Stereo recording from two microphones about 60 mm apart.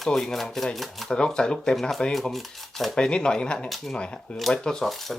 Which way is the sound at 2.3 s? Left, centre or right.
Centre.